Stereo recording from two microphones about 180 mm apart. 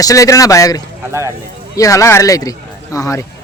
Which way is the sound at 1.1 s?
15° right (ahead or behind).